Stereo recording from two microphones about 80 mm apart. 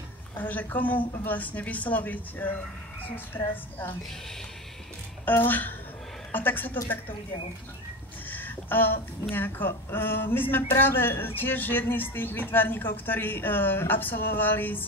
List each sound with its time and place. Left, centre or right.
0.4 s speech: left
5.2 s speech: left
8.3 s a sound: left
9.3 s speech: left